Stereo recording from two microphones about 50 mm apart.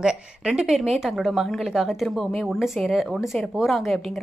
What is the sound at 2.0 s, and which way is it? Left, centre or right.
Speech, centre.